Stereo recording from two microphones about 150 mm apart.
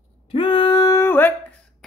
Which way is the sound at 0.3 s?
35° left (ahead or behind).